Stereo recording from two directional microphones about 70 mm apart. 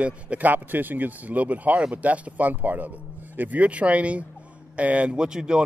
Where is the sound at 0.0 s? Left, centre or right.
Right.